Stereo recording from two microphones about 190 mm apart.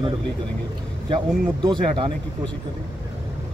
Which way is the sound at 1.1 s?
25° right (ahead or behind).